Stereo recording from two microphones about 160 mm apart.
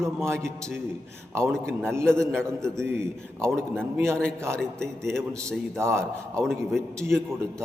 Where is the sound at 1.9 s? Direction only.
15° right (ahead or behind).